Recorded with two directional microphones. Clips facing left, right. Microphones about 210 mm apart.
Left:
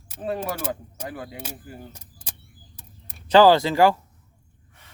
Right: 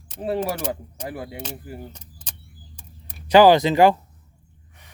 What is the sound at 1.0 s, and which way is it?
Speech, 30° right (ahead or behind).